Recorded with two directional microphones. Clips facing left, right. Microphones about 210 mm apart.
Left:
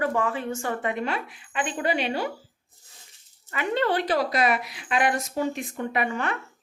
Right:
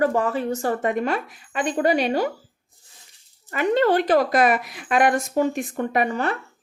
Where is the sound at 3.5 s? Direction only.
45° right (ahead or behind).